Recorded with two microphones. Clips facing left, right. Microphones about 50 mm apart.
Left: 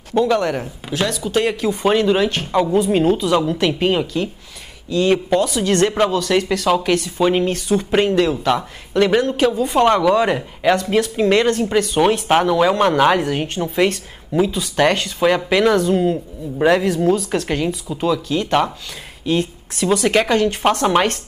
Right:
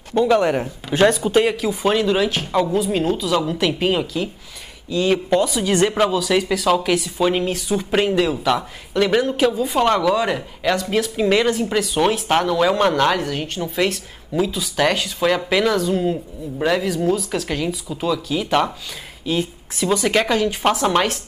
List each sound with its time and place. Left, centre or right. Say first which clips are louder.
0.2 s speech: right 1 dB; centre
1.0 s speech: right 8 dB; right
1.3 s speech: right 1 dB; centre
5.4 s speech: left 1 dB; centre
16.8 s speech: left 3 dB; centre